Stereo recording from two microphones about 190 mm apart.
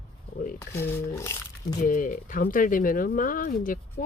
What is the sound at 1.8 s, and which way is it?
Speech, 45° left (ahead or behind).